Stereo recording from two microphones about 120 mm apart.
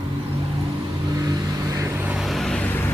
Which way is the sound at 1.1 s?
30° right (ahead or behind).